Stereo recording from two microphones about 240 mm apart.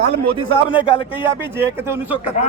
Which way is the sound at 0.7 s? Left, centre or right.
Left.